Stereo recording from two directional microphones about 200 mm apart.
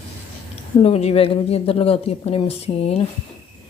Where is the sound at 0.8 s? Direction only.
30° left (ahead or behind).